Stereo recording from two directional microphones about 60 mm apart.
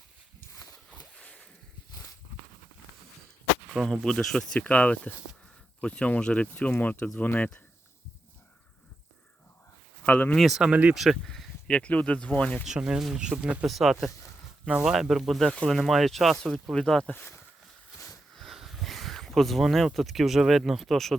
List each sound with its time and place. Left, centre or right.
0.9 s a sound: centre
3.8 s speech: centre
4.5 s speech: left
10.1 s speech: left
10.3 s speech: centre
10.6 s speech: right
10.9 s speech: centre
11.3 s a sound: centre
11.7 s speech: centre
12.6 s speech: centre
13.7 s speech: centre
15.1 s speech: centre
17.1 s speech: left
18.5 s speech: centre